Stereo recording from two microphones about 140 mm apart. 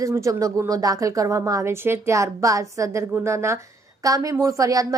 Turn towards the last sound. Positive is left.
turn(degrees=-25)  # may be behind; listen again after turning